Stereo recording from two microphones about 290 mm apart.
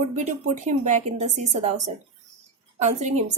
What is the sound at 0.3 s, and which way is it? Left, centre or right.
A woman's voice, right.